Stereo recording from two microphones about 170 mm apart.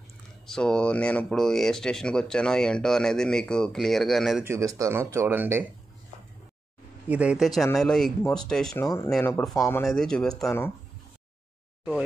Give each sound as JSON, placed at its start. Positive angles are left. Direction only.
{"t": 0.5, "sound": "speech", "side_deg": 5}
{"t": 4.5, "sound": "speech", "side_deg": -20}
{"t": 7.1, "sound": "speech", "side_deg": -5}
{"t": 8.8, "sound": "speech", "side_deg": 15}
{"t": 9.8, "sound": "speech", "side_deg": 5}